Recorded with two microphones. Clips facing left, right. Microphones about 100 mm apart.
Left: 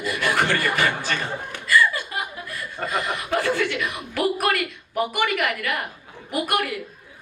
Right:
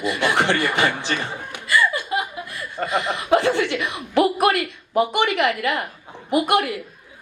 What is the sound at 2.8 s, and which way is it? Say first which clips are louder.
Speech: right 3 dB; 20° right (ahead or behind).